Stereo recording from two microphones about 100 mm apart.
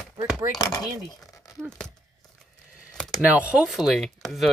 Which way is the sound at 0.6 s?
40° left (ahead or behind).